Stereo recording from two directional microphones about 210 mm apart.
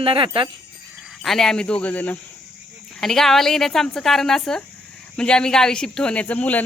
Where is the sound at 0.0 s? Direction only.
25° right (ahead or behind).